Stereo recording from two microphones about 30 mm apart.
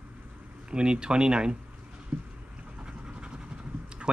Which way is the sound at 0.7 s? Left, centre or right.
Right.